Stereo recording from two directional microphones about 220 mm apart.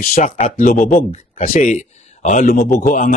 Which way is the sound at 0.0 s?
40° left (ahead or behind).